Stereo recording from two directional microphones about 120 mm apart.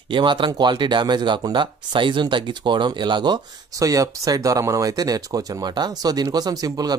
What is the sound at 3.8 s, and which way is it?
Speech, 30° right (ahead or behind).